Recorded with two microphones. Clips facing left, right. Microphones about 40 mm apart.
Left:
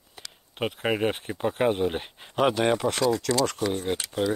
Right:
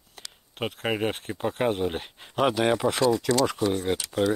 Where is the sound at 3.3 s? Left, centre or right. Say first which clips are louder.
Right 1 dB; centre.